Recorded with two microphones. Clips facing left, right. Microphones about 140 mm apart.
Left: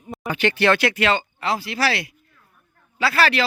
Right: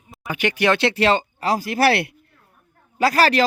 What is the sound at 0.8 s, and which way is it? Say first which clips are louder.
Speech: right 2 dB; 30° right (ahead or behind).